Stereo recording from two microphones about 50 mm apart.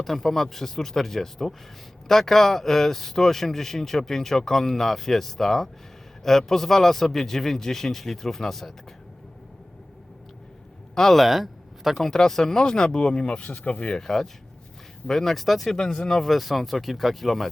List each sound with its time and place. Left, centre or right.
0.0 s speech: centre
10.9 s speech: centre
11.9 s speech: centre; by 13.9 s left
13.9 s speech: centre